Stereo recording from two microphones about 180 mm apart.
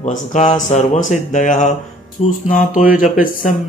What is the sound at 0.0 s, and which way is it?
Speech, 40° left (ahead or behind).